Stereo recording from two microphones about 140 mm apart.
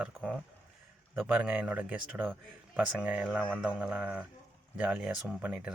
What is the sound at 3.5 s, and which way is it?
Speech, 5° right (ahead or behind).